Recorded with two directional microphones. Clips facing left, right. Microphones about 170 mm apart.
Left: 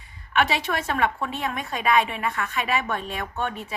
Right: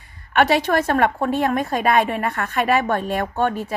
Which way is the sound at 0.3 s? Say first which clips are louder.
Right 7 dB; 50° right (ahead or behind).